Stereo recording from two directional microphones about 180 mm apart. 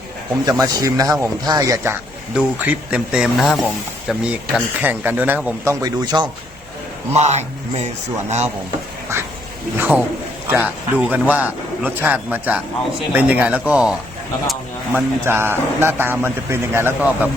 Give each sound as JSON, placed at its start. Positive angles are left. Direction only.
{"t": 0.4, "sound": "a man's voice", "side_deg": -20}
{"t": 5.8, "sound": "speech", "side_deg": -20}
{"t": 7.1, "sound": "a man's voice", "side_deg": -40}
{"t": 9.7, "sound": "a man's voice", "side_deg": -10}
{"t": 14.9, "sound": "a man's voice", "side_deg": -10}